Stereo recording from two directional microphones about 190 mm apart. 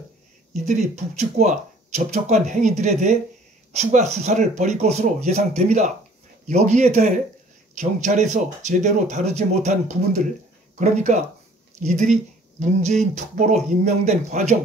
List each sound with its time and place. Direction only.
0.5 s speech: 40° right (ahead or behind)